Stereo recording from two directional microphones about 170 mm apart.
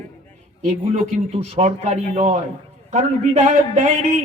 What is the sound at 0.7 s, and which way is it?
A man's voice, 40° right (ahead or behind).